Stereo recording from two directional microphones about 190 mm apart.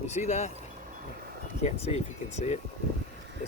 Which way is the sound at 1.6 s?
35° left (ahead or behind).